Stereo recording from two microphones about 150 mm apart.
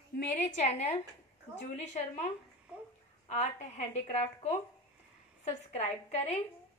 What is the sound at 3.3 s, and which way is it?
A woman's voice, 55° left (ahead or behind).